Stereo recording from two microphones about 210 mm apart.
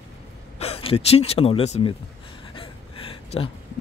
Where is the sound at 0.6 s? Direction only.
30° left (ahead or behind).